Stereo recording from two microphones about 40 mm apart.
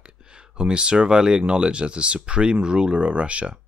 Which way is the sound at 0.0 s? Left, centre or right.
Right.